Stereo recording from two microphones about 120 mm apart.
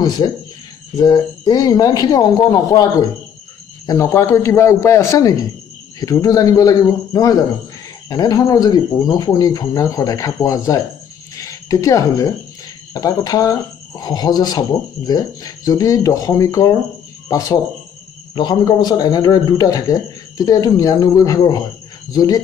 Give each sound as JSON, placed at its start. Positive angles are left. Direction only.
{"t": 0.9, "sound": "a man's voice", "side_deg": 30}